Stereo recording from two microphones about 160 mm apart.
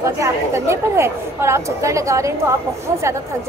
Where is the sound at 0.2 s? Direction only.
15° right (ahead or behind).